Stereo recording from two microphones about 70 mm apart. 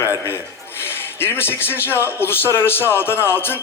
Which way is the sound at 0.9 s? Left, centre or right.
Left.